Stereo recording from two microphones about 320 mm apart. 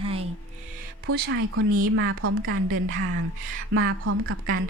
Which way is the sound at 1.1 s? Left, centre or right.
Right.